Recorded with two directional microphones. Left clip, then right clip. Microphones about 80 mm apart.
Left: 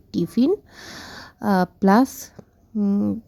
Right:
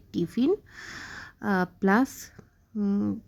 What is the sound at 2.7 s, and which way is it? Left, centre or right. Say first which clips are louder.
Speech: left 6 dB; centre.